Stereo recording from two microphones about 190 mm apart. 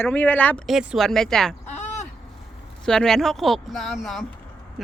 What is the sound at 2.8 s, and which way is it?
Speech, 5° left (ahead or behind).